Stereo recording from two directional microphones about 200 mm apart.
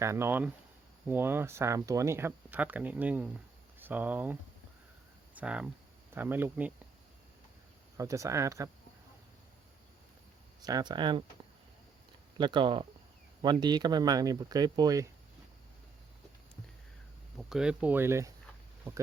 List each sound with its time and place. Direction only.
0.0 s speech: 15° right (ahead or behind)
7.9 s speech: 15° right (ahead or behind)
10.6 s speech: 20° right (ahead or behind)
12.4 s speech: 25° right (ahead or behind)
17.3 s speech: centre (ahead or behind)